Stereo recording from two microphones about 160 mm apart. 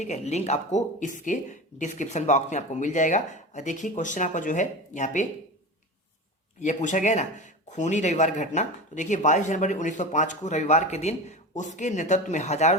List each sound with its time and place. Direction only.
0.0 s speech: 45° left (ahead or behind)
6.6 s speech: 50° left (ahead or behind)